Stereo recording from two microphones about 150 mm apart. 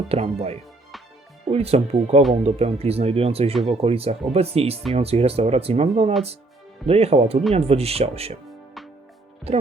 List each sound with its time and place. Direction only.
0.1 s speech: 40° right (ahead or behind)
9.5 s speech: 40° right (ahead or behind)